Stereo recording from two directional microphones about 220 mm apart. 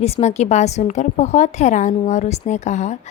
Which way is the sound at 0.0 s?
30° left (ahead or behind).